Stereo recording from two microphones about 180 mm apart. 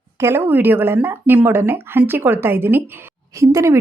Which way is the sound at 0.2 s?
15° right (ahead or behind).